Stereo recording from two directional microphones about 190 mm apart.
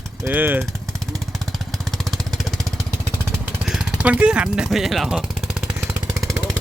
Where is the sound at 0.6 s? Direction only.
Centre (ahead or behind).